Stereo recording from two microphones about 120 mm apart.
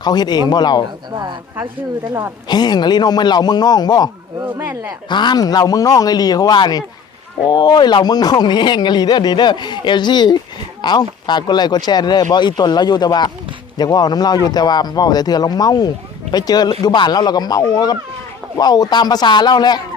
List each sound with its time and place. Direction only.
0.0 s speech: 35° left (ahead or behind)
1.1 s speech: 35° right (ahead or behind)
2.5 s speech: 35° left (ahead or behind)
4.4 s speech: 20° right (ahead or behind)
5.0 s speech: 40° left (ahead or behind)